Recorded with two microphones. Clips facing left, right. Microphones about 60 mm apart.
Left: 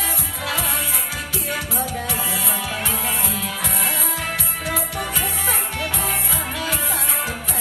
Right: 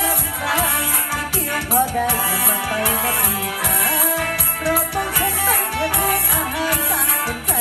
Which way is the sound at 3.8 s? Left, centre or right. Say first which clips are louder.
Right 5 dB; right.